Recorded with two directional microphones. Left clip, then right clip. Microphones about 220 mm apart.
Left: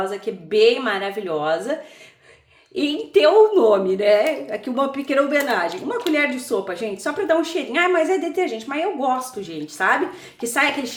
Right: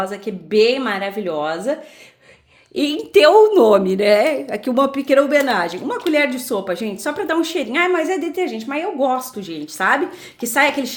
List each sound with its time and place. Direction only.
0.0 s a woman's voice: 40° right (ahead or behind)
2.7 s a woman's voice: 50° right (ahead or behind)